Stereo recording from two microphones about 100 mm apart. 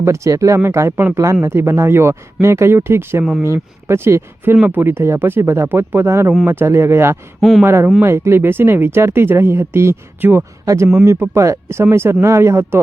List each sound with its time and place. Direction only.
0.0 s speech: 30° right (ahead or behind)